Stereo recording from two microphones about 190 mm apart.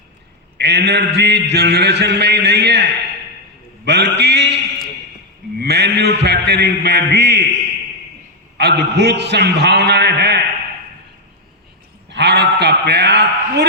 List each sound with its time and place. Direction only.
0.6 s a man's voice: 65° right (ahead or behind)
8.5 s a man's voice: 60° right (ahead or behind)
12.0 s bleat: 65° right (ahead or behind)